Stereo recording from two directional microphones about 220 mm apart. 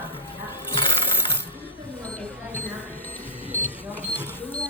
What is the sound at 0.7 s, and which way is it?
Coin, 25° left (ahead or behind).